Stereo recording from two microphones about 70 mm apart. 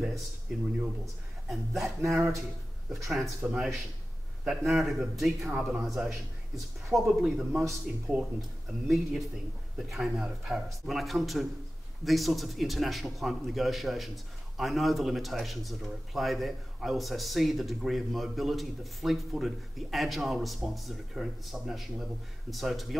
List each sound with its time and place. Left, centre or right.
0.5 s a man's voice: centre
2.0 s speech: right
3.1 s a man's voice: centre
5.8 s a man's voice: centre